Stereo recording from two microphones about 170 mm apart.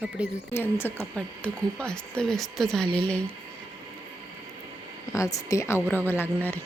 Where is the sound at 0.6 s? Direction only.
15° left (ahead or behind).